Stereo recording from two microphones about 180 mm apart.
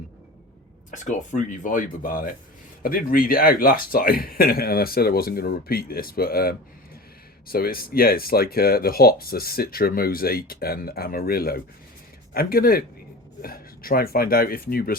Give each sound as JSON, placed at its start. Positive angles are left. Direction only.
{"t": 0.9, "sound": "speech", "side_deg": 45}